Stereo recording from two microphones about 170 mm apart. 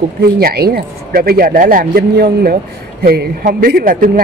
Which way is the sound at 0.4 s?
65° right (ahead or behind).